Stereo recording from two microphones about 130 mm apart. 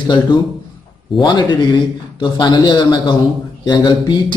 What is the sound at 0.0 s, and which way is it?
A man's voice, 35° left (ahead or behind).